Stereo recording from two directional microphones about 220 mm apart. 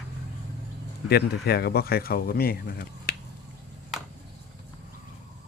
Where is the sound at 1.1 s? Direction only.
45° left (ahead or behind).